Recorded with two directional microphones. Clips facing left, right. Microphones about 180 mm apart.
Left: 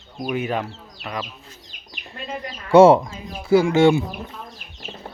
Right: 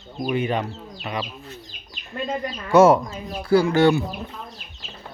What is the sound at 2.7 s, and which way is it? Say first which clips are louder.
Speech: left 3 dB; 30° left (ahead or behind).